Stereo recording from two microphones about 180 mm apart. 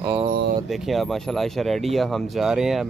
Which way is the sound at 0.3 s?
60° right (ahead or behind).